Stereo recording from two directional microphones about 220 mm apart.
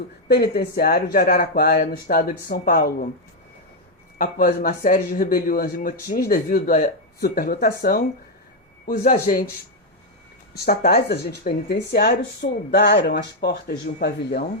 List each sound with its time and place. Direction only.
0.3 s speech: 45° left (ahead or behind)
4.2 s speech: 40° left (ahead or behind)
10.5 s speech: 45° left (ahead or behind)